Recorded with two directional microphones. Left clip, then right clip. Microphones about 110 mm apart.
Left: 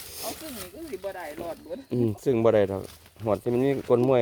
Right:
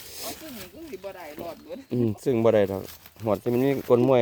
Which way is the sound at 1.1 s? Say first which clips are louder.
Left 4 dB; 90° right.